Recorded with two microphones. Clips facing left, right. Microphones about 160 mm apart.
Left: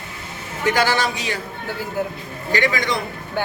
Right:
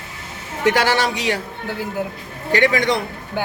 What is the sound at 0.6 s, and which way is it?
Speech, 80° right.